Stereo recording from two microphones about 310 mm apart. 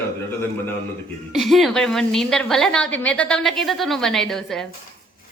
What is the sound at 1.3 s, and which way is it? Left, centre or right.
A woman's voice, centre.